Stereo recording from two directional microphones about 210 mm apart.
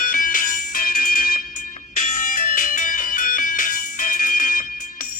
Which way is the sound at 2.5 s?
40° left (ahead or behind).